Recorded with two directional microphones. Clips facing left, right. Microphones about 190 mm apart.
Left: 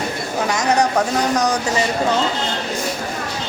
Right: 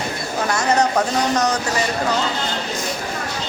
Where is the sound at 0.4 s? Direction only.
15° left (ahead or behind).